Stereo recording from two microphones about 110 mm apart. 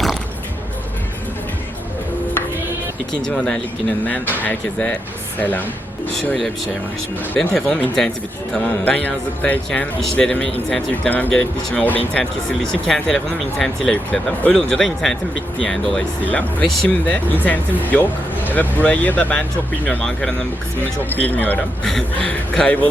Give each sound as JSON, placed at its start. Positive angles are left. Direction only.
{"t": 3.1, "sound": "speech", "side_deg": 5}
{"t": 7.3, "sound": "speech", "side_deg": 5}